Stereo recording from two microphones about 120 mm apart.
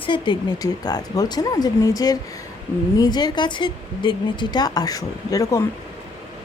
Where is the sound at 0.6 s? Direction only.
30° left (ahead or behind).